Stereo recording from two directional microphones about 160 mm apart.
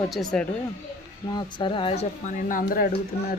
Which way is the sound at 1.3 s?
30° left (ahead or behind).